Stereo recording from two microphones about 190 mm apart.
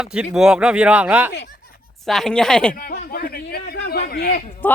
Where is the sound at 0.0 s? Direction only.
5° right (ahead or behind).